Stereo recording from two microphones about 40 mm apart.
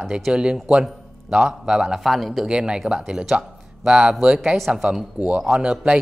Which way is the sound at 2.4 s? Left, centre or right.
Right.